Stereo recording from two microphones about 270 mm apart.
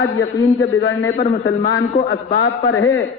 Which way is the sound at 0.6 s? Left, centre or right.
Left.